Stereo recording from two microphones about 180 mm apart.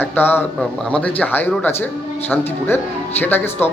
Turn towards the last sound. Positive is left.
turn(degrees=10)  # may be behind; listen again after turning